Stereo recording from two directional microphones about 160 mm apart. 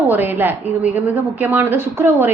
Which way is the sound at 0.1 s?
15° right (ahead or behind).